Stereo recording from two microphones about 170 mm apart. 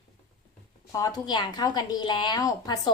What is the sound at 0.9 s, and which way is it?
A woman's voice, 20° left (ahead or behind).